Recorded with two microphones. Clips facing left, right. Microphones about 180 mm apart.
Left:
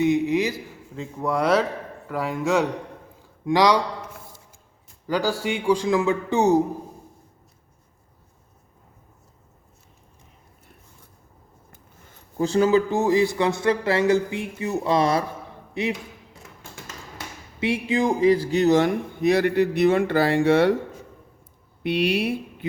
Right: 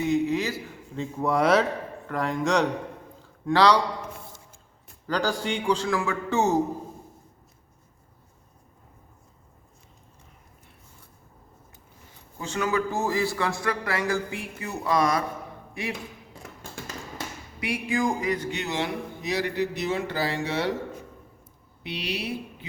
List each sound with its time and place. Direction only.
0.0 s a man's voice: 15° left (ahead or behind)
0.9 s a man's voice: centre (ahead or behind)
5.0 s a man's voice: 10° left (ahead or behind)
12.4 s speech: 35° left (ahead or behind)
17.6 s a man's voice: 25° left (ahead or behind); by 20.7 s 55° left (ahead or behind)
21.8 s a man's voice: 55° left (ahead or behind)